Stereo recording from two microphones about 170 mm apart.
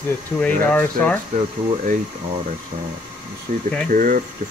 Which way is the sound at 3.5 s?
55° right (ahead or behind).